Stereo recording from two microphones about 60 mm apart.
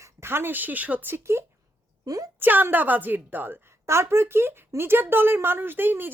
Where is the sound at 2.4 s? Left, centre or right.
Right.